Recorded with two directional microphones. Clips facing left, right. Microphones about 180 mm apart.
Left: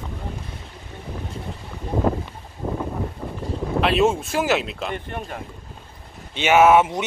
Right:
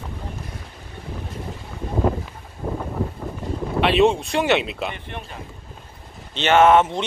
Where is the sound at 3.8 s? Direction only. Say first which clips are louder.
Right 2 dB; centre (ahead or behind).